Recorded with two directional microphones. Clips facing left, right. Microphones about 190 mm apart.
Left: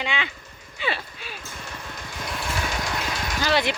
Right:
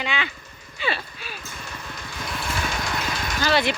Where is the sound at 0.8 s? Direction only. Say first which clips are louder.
Right 1 dB; 15° left (ahead or behind).